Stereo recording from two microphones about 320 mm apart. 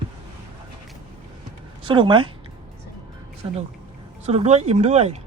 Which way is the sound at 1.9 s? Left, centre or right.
Centre.